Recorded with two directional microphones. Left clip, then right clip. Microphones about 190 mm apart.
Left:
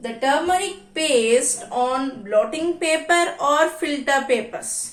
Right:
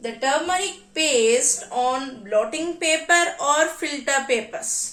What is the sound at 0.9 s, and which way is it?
A woman's voice, 25° right (ahead or behind).